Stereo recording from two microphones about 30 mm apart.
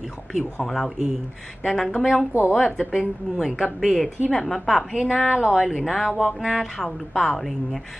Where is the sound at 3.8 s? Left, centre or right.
Centre.